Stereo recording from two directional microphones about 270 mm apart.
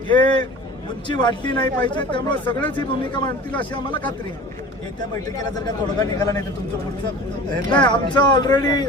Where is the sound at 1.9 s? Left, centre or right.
Centre.